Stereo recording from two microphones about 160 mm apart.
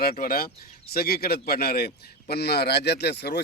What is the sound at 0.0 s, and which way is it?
Speech, 70° left (ahead or behind).